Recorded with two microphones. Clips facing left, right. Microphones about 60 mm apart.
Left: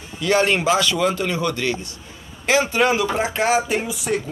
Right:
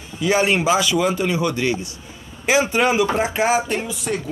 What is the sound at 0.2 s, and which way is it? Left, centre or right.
A man's voice, centre.